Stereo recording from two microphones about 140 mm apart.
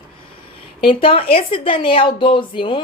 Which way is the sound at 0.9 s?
40° left (ahead or behind).